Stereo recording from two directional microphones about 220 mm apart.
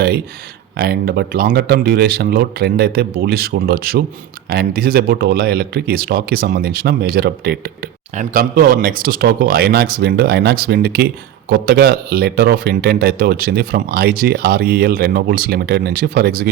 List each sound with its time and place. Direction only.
0.8 s speech: 45° right (ahead or behind)